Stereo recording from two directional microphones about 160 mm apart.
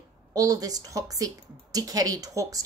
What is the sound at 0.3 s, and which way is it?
A woman's voice, 20° right (ahead or behind).